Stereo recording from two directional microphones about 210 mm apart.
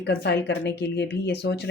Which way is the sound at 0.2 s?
55° left (ahead or behind).